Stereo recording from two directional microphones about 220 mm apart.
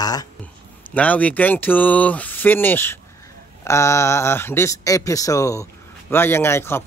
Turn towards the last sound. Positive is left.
turn(degrees=10)  # may be behind; listen again after turning